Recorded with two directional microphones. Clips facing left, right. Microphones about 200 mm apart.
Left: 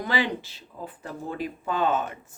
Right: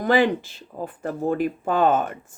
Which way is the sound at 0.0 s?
50° right (ahead or behind).